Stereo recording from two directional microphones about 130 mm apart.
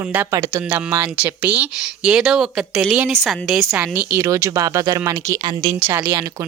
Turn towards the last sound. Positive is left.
turn(degrees=-25)  # may be behind; listen again after turning